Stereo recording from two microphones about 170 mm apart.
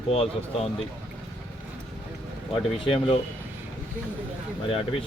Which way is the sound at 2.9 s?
35° left (ahead or behind).